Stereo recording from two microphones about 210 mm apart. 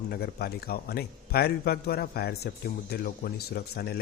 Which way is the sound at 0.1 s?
50° left (ahead or behind).